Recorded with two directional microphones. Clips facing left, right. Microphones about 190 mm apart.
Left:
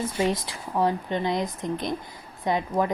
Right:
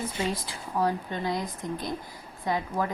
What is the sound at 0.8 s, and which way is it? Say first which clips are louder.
A woman's voice: left 3 dB; 20° left (ahead or behind).